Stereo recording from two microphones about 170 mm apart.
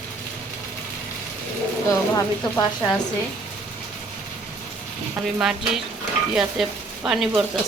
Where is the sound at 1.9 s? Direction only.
20° left (ahead or behind).